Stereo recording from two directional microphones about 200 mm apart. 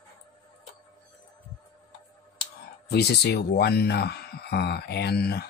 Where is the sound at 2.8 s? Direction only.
55° left (ahead or behind).